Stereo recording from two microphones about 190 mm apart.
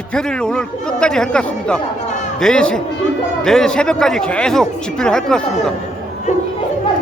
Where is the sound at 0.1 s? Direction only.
5° left (ahead or behind).